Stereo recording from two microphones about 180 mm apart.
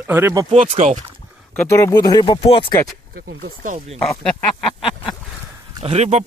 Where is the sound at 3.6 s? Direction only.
45° right (ahead or behind).